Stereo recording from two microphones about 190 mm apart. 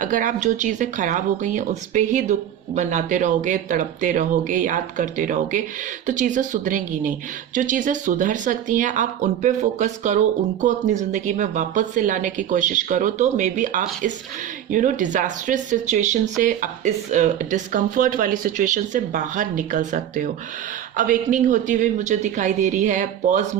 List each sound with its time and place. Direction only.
0.0 s speech: 45° right (ahead or behind)